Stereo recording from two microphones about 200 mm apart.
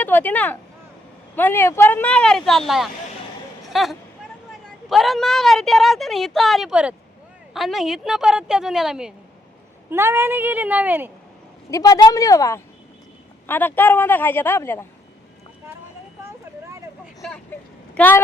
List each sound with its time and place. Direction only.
0.0 s a woman's voice: 10° left (ahead or behind); by 11.1 s 10° right (ahead or behind)
11.7 s a woman's voice: 20° left (ahead or behind)
16.2 s vehicle: 15° right (ahead or behind)
17.9 s speech: 10° left (ahead or behind)